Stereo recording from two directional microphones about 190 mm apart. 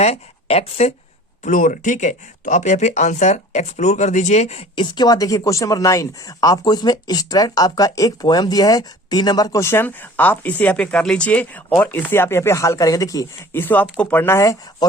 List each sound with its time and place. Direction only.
0.0 s speech: 35° left (ahead or behind); by 14.8 s 15° left (ahead or behind)